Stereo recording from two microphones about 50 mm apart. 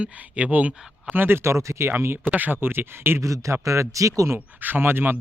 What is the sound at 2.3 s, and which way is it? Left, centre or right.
Speech, right.